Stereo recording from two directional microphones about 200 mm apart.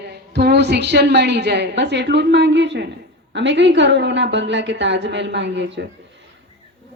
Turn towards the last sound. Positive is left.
turn(degrees=-60)  # may be behind; listen again after turning